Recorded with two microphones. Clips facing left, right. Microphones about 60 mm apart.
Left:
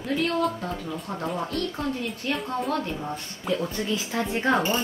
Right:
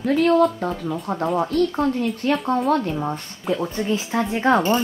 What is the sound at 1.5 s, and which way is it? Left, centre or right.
Speech, right.